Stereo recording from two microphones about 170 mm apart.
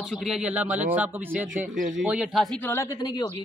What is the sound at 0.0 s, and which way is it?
A man's voice, centre (ahead or behind).